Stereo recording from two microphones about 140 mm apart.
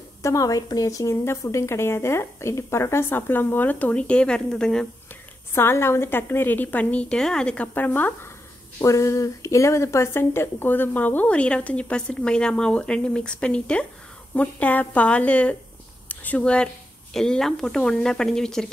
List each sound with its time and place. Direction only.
0.2 s a woman's voice: 25° left (ahead or behind); by 4.8 s 5° left (ahead or behind)
5.5 s speech: 15° left (ahead or behind)